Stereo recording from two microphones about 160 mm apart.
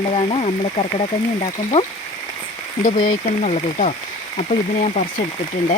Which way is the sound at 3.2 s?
50° left (ahead or behind).